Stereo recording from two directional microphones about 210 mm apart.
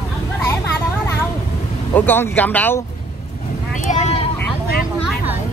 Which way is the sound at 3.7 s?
35° left (ahead or behind).